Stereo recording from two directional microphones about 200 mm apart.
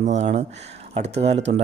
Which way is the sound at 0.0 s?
35° right (ahead or behind).